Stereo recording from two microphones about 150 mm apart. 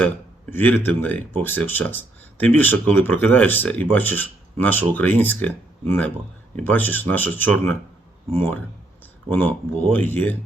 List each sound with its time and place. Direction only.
0.5 s speech: 10° left (ahead or behind)
9.9 s speech: 10° left (ahead or behind)